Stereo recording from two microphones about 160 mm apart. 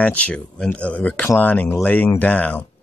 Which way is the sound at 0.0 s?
10° left (ahead or behind).